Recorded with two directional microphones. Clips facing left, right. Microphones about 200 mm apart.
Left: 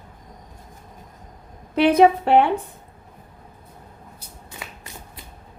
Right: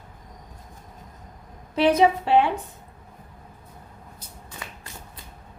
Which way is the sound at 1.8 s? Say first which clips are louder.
Left 4 dB; 60° left (ahead or behind).